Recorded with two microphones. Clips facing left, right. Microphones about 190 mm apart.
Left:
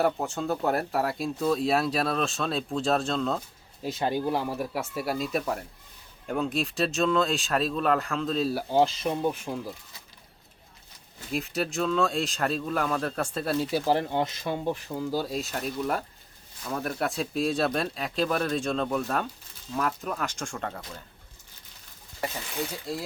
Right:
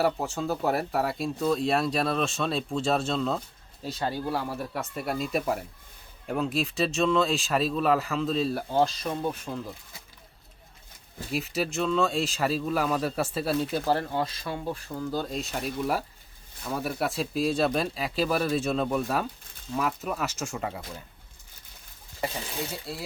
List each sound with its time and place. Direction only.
0.0 s speech: centre (ahead or behind)
3.8 s speech: 15° left (ahead or behind); by 8.6 s centre (ahead or behind)
8.7 s speech: 15° left (ahead or behind)
11.3 s speech: centre (ahead or behind)